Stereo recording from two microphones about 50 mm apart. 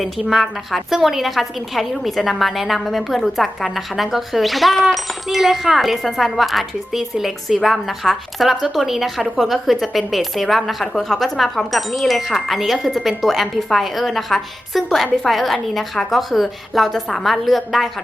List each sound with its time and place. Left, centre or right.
0.0 s a woman's voice: centre